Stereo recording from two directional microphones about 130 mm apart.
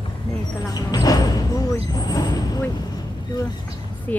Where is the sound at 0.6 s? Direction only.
30° left (ahead or behind).